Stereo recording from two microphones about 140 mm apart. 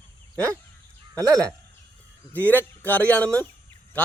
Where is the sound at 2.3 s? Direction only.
10° left (ahead or behind).